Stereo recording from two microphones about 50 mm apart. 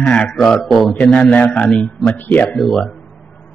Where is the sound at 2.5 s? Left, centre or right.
Centre.